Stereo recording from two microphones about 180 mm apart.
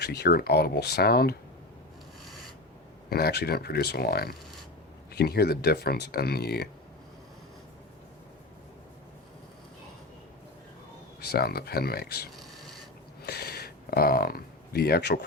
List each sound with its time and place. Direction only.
0.0 s speech: 65° left (ahead or behind)
3.1 s speech: 60° left (ahead or behind)
11.2 s speech: 60° left (ahead or behind)
12.4 s cat: centre (ahead or behind)
13.2 s a sound: 60° left (ahead or behind)